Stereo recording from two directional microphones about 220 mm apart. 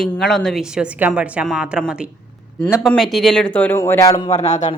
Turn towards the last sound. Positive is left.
turn(degrees=30)  # may be behind; listen again after turning